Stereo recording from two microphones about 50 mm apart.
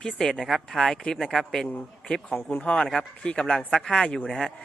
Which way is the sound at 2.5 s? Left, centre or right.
Left.